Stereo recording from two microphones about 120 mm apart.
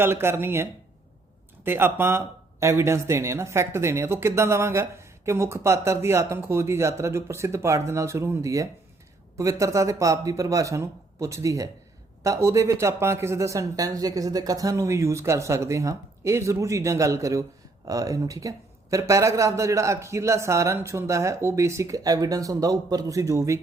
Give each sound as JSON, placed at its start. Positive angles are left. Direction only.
{"t": 0.0, "sound": "speech", "side_deg": -20}